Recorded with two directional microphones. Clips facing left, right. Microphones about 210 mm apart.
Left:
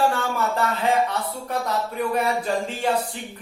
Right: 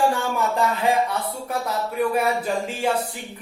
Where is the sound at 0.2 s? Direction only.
15° right (ahead or behind).